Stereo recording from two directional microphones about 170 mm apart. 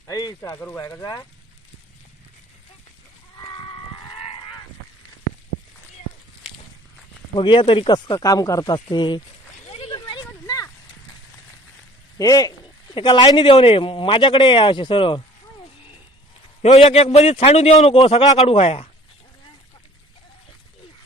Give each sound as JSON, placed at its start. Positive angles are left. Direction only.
{"t": 0.1, "sound": "speech", "side_deg": 20}
{"t": 3.3, "sound": "livestock", "side_deg": 30}
{"t": 4.2, "sound": "goose", "side_deg": 30}
{"t": 7.3, "sound": "speech", "side_deg": 30}
{"t": 9.6, "sound": "a sound", "side_deg": 35}
{"t": 12.1, "sound": "speech", "side_deg": 20}
{"t": 16.7, "sound": "a man's voice", "side_deg": 40}